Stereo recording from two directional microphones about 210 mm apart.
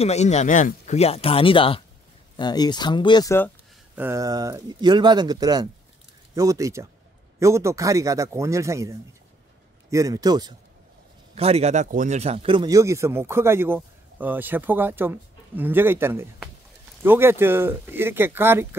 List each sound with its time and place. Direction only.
0.0 s speech: 30° left (ahead or behind); by 3.5 s 10° left (ahead or behind)
3.9 s speech: 10° right (ahead or behind)
11.3 s speech: 30° right (ahead or behind); by 18.8 s 10° right (ahead or behind)